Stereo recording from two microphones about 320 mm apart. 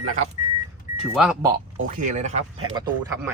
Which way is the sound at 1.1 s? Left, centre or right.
Centre.